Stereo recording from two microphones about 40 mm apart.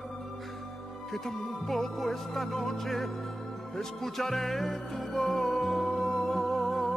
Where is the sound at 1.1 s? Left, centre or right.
Centre.